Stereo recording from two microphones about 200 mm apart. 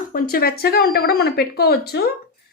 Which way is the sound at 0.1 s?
50° left (ahead or behind).